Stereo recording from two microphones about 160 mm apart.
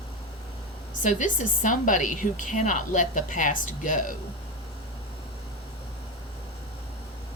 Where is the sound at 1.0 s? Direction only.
55° left (ahead or behind).